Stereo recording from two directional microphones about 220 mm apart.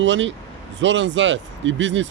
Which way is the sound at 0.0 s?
55° right (ahead or behind).